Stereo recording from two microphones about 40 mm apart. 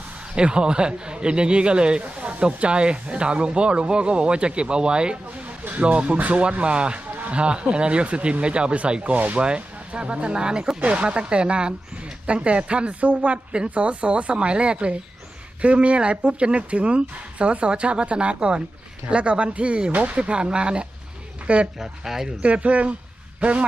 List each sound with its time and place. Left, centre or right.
0.3 s a man's voice: right
7.1 s a man's voice: right
21.8 s speech: centre
22.4 s a woman's voice: right